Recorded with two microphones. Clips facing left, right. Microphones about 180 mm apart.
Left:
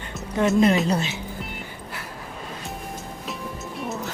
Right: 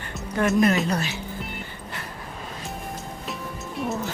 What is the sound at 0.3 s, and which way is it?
Speech, 20° left (ahead or behind).